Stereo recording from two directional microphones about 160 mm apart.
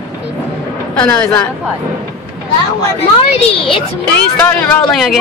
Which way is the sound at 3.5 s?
35° left (ahead or behind).